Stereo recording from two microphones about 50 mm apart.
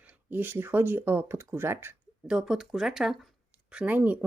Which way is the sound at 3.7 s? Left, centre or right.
Right.